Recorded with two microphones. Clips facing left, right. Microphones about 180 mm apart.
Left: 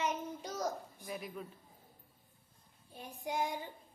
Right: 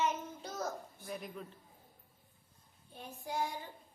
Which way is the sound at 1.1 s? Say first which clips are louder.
Left 1 dB; 5° left (ahead or behind).